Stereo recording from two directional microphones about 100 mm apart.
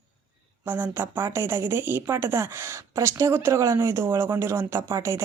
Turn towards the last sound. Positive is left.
turn(degrees=-25)  # may be behind; listen again after turning